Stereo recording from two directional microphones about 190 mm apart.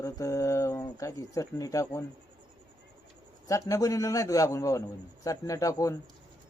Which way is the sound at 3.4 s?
15° left (ahead or behind).